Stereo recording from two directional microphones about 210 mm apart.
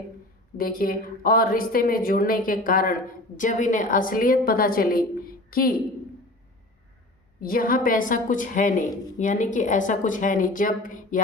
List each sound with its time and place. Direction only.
0.5 s a woman's voice: 45° left (ahead or behind)
7.4 s a woman's voice: 40° left (ahead or behind)